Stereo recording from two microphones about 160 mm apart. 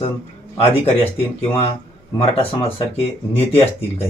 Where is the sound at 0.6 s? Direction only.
40° left (ahead or behind).